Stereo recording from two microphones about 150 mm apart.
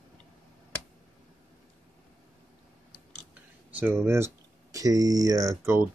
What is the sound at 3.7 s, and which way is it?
Speech, 15° right (ahead or behind).